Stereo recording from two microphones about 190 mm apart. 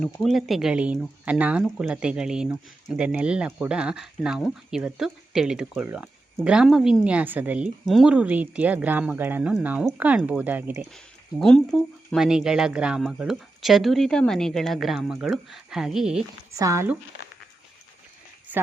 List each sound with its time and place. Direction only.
0.0 s a woman's voice: centre (ahead or behind)
10.9 s speech: centre (ahead or behind)
16.6 s a woman's voice: 15° right (ahead or behind)